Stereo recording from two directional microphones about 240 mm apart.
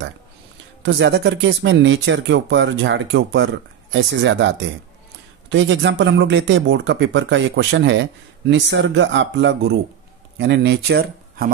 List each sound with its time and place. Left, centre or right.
0.8 s speech: right